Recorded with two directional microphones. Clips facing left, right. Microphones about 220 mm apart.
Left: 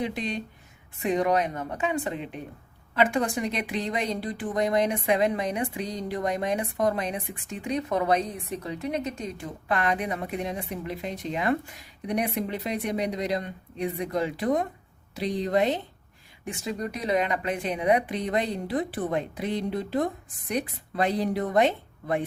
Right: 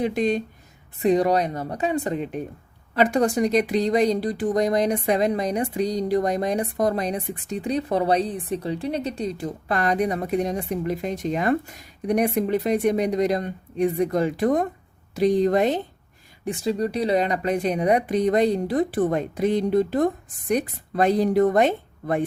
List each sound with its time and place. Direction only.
0.0 s speech: 45° right (ahead or behind)
0.9 s speech: 35° right (ahead or behind)
16.4 s speech: 35° right (ahead or behind)